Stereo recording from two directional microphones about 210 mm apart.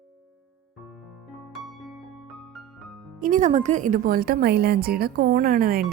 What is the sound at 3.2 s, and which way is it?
A woman's voice, 40° right (ahead or behind).